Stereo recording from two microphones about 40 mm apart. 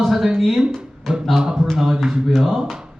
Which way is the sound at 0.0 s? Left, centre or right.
Centre.